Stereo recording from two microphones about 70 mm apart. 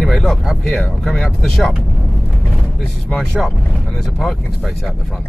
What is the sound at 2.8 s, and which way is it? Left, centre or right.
Speech, centre.